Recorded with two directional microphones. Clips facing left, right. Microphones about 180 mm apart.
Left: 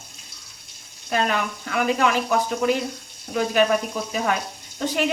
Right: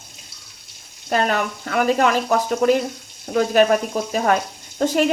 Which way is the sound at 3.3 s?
45° right (ahead or behind).